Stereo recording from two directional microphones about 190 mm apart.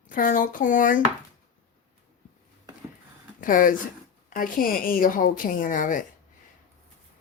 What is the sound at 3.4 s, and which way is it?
Speech, 45° left (ahead or behind).